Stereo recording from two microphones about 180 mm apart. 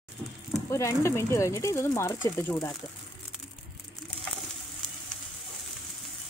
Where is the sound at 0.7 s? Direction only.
15° left (ahead or behind).